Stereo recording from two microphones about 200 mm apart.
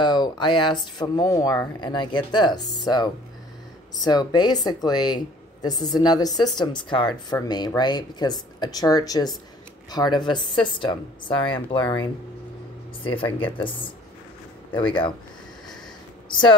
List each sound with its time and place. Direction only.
0.0 s speech: 20° left (ahead or behind)
16.3 s speech: 25° left (ahead or behind)